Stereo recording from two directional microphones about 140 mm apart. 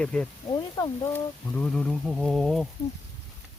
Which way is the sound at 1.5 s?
5° left (ahead or behind).